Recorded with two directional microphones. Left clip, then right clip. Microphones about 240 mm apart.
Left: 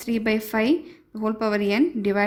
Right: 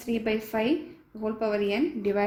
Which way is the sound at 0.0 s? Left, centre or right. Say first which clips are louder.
Left 4 dB; left.